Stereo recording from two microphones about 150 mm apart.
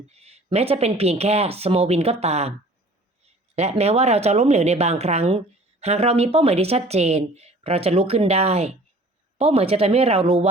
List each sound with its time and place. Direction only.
0.1 s a woman's voice: 45° right (ahead or behind)
3.5 s a woman's voice: 45° right (ahead or behind)